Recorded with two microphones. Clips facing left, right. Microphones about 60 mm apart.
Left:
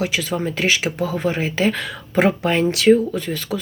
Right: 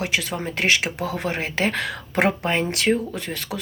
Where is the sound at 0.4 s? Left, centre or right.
Right.